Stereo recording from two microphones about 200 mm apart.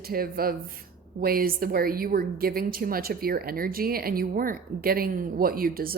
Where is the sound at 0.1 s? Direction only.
50° right (ahead or behind).